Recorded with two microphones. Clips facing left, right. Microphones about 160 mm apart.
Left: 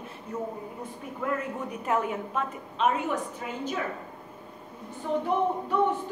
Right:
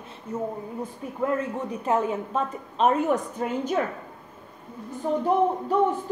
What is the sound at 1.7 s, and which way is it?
A woman's voice, 30° right (ahead or behind).